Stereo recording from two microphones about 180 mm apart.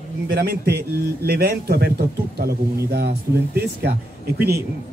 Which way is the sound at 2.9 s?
60° right (ahead or behind).